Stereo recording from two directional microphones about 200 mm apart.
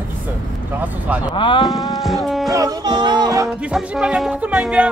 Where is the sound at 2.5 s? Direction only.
20° right (ahead or behind).